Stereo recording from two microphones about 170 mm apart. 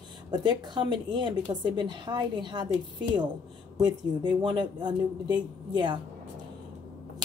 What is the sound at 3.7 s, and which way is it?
A woman's voice, 25° right (ahead or behind).